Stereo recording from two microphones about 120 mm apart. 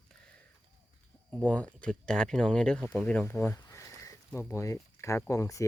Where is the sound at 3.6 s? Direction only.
30° left (ahead or behind).